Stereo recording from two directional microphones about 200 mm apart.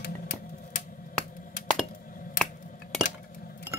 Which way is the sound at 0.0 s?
45° left (ahead or behind).